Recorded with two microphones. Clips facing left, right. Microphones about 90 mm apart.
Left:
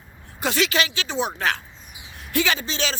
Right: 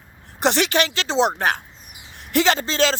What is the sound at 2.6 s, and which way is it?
Speech, 40° right (ahead or behind).